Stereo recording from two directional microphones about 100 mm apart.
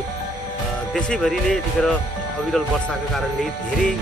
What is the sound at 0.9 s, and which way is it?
Speech, 5° left (ahead or behind).